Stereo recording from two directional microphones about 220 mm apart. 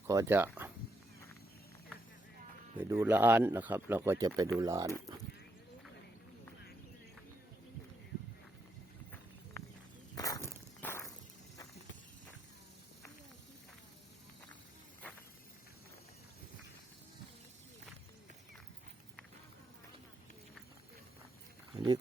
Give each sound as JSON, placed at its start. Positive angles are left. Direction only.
{"t": 0.1, "sound": "speech", "side_deg": -10}
{"t": 2.7, "sound": "a man's voice", "side_deg": -10}
{"t": 10.2, "sound": "walk", "side_deg": 15}
{"t": 21.7, "sound": "wild animals", "side_deg": -20}